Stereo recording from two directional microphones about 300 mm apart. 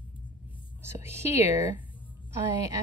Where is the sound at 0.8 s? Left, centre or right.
Centre.